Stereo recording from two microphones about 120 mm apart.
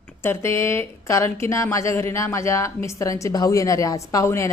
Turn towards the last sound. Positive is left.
turn(degrees=25)  # may be behind; listen again after turning